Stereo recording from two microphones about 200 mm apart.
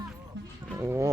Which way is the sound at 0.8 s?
15° right (ahead or behind).